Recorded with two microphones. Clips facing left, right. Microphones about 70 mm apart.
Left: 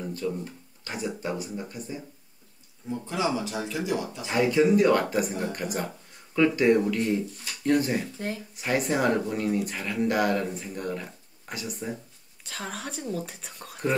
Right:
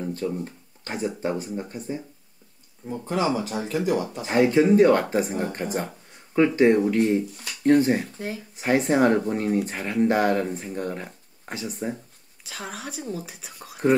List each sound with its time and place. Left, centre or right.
0.1 s speech: right
2.9 s speech: right
12.4 s speech: centre